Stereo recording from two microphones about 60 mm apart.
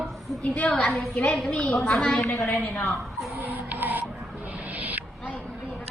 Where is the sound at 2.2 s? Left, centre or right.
Left.